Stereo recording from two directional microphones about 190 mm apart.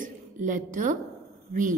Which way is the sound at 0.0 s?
45° right (ahead or behind).